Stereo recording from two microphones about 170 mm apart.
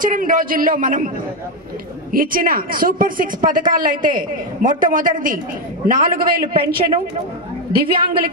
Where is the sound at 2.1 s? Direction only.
55° right (ahead or behind).